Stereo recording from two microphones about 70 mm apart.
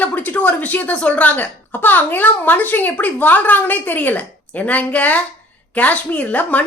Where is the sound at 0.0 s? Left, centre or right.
Left.